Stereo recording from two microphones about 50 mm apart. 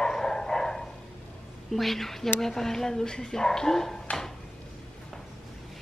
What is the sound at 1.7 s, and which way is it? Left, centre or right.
Speech, centre.